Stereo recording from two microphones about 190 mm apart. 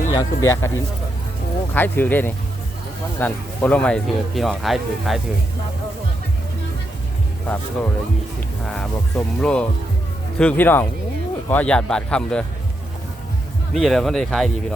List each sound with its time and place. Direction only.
0.1 s speech: 15° left (ahead or behind)
1.7 s speech: 10° left (ahead or behind)
7.4 s speech: 10° left (ahead or behind)
13.7 s speech: centre (ahead or behind)